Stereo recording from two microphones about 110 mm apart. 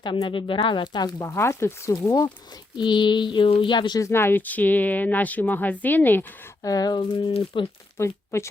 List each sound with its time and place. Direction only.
0.0 s speech: 45° left (ahead or behind)
1.2 s speech: 25° left (ahead or behind)
2.0 s speech: 35° left (ahead or behind)
4.0 s speech: 20° left (ahead or behind)
6.6 s speech: 35° left (ahead or behind)
7.0 s speech: 50° left (ahead or behind)
7.9 s speech: 25° left (ahead or behind)